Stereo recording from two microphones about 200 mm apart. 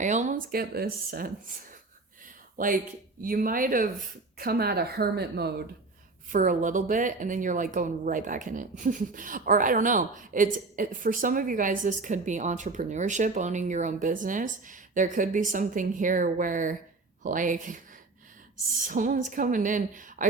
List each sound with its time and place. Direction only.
0.0 s speech: 40° right (ahead or behind)
2.6 s speech: 45° right (ahead or behind)
6.3 s speech: 40° right (ahead or behind)
18.9 s speech: 40° right (ahead or behind)